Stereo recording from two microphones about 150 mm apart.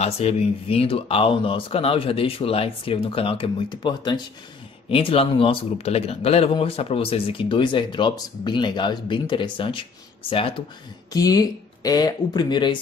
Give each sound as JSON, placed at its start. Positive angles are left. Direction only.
{"t": 0.0, "sound": "speech", "side_deg": 40}
{"t": 11.1, "sound": "speech", "side_deg": 25}